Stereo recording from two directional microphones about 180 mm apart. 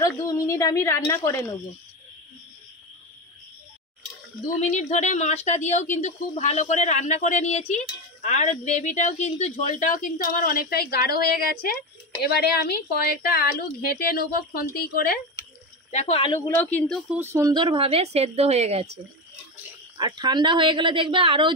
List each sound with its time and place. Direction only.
0.2 s a woman's voice: 15° left (ahead or behind)
4.7 s a woman's voice: 40° left (ahead or behind); by 15.1 s 55° left (ahead or behind)
15.9 s a woman's voice: 35° left (ahead or behind)
16.4 s speech: 10° left (ahead or behind)
17.1 s speech: 10° right (ahead or behind); by 18.9 s 35° right (ahead or behind)
20.0 s speech: 25° right (ahead or behind)